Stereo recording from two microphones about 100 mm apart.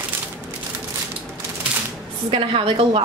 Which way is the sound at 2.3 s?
70° right (ahead or behind).